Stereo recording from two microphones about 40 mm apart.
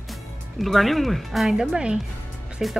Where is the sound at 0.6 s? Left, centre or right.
Centre.